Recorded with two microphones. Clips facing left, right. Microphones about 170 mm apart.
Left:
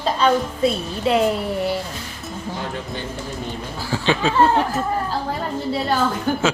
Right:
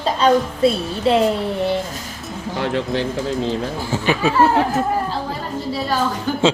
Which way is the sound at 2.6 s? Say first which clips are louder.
Right 12 dB; 75° right (ahead or behind).